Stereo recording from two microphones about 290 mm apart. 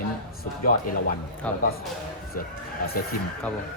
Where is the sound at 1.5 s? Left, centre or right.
Centre.